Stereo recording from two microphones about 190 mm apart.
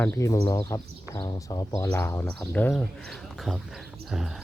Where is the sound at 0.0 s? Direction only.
15° left (ahead or behind).